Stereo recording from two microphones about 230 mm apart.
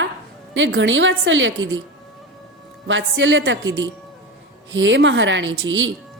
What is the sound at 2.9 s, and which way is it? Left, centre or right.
A woman's voice, right.